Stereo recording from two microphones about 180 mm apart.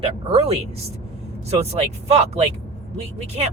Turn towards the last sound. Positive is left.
turn(degrees=-35)  # may be behind; listen again after turning